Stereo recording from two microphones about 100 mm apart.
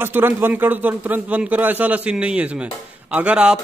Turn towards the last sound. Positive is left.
turn(degrees=-10)  # may be behind; listen again after turning